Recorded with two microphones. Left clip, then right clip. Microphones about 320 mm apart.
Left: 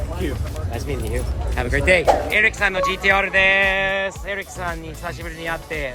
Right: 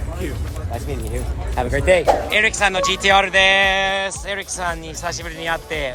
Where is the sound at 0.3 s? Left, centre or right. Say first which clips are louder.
Left 1 dB; centre.